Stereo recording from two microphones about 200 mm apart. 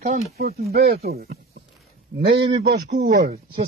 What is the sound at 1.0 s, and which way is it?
Speech, 50° right (ahead or behind).